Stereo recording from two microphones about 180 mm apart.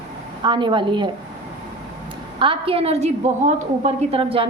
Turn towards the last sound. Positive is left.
turn(degrees=-30)  # may be behind; listen again after turning